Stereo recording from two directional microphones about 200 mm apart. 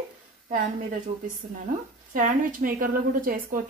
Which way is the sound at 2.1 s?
40° right (ahead or behind).